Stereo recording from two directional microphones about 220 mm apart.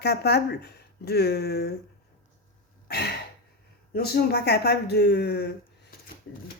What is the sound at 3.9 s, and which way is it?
Speech, 45° left (ahead or behind).